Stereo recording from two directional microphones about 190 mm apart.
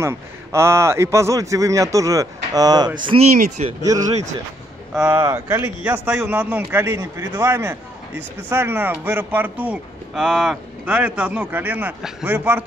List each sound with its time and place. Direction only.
0.0 s a man's voice: 15° right (ahead or behind)
3.3 s speech: 40° right (ahead or behind)
4.9 s a man's voice: 10° right (ahead or behind)